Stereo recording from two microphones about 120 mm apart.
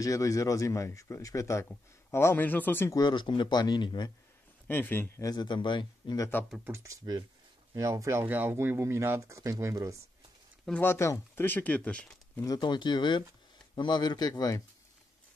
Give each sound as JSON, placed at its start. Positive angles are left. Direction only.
{"t": 0.0, "sound": "speech", "side_deg": 25}
{"t": 3.0, "sound": "speech", "side_deg": 40}
{"t": 4.6, "sound": "speech", "side_deg": 15}
{"t": 6.6, "sound": "speech", "side_deg": -25}
{"t": 10.8, "sound": "speech", "side_deg": 20}
{"t": 12.4, "sound": "speech", "side_deg": 35}